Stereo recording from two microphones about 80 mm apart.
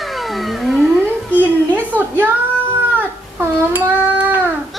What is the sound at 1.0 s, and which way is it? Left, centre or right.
Speech, right.